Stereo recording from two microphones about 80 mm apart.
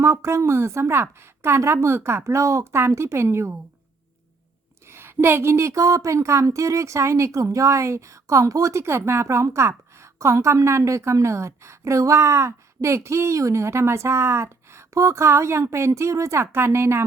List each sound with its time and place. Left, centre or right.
0.0 s a woman's voice: right
4.9 s a woman's voice: right